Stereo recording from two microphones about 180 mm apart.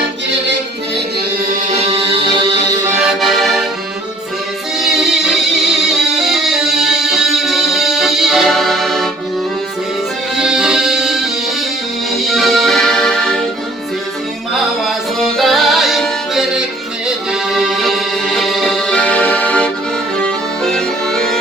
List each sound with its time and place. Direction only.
1.7 s music: 35° right (ahead or behind)
2.4 s music: 15° right (ahead or behind)
4.8 s music: centre (ahead or behind)
10.3 s music: 5° right (ahead or behind)
14.8 s music: centre (ahead or behind)